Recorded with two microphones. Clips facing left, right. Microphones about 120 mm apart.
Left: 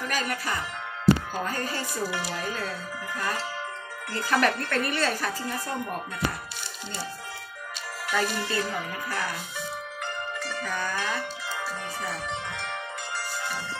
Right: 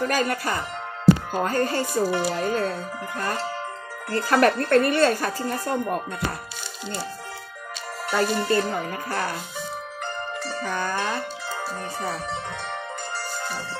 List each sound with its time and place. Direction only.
0.0 s speech: 40° right (ahead or behind)
1.4 s speech: 55° right (ahead or behind)
2.0 s speech: 35° right (ahead or behind)
8.1 s speech: 40° right (ahead or behind)
10.4 s music: 35° right (ahead or behind)
10.9 s speech: 35° right (ahead or behind)
13.2 s music: 35° right (ahead or behind)